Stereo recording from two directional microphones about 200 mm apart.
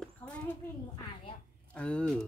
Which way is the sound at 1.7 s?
5° left (ahead or behind).